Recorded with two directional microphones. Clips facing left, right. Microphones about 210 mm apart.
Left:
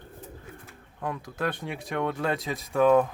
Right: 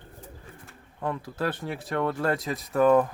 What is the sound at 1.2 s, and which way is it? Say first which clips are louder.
Speech: right 1 dB; 5° right (ahead or behind).